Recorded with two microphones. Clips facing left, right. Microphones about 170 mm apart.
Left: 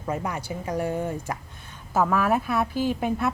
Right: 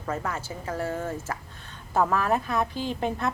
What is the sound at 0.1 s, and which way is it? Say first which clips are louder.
A woman's voice: left 2 dB; 15° left (ahead or behind).